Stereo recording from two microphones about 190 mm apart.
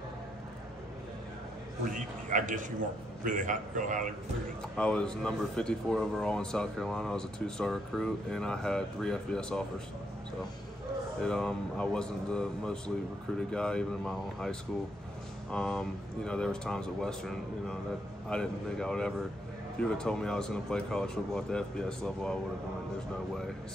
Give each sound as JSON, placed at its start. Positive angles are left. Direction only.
{"t": 1.9, "sound": "a man's voice", "side_deg": -45}
{"t": 4.7, "sound": "speech", "side_deg": 5}
{"t": 11.2, "sound": "speech", "side_deg": 5}